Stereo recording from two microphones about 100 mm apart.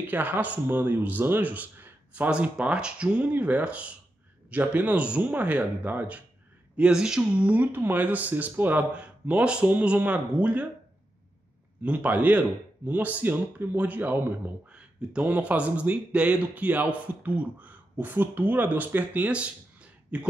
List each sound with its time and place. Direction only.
0.0 s speech: 15° right (ahead or behind)
11.8 s speech: 15° right (ahead or behind)